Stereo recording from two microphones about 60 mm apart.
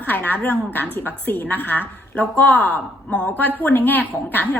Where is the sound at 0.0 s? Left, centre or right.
Left.